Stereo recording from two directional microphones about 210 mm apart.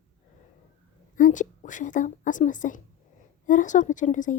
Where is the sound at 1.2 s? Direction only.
35° left (ahead or behind).